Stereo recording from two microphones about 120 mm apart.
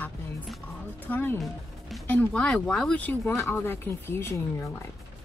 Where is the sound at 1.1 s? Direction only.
15° left (ahead or behind).